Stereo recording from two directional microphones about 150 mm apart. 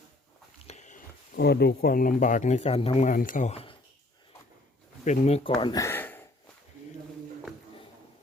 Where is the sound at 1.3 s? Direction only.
90° left; by 3.1 s 40° left (ahead or behind).